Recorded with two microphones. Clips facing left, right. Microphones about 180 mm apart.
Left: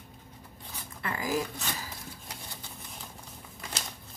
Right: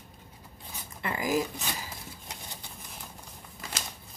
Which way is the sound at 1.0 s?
20° right (ahead or behind).